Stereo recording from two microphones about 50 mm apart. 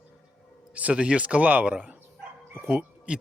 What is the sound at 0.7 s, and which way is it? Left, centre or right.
Speech, right.